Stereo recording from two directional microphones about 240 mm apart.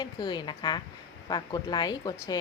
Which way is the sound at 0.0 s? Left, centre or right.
Centre.